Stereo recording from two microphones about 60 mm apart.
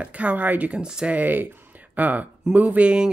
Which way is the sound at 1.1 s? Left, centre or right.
Right.